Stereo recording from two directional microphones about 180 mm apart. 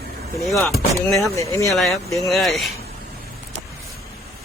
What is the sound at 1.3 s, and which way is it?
Speech, 15° left (ahead or behind).